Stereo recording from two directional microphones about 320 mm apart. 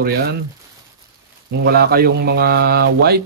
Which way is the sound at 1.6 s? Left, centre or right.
Right.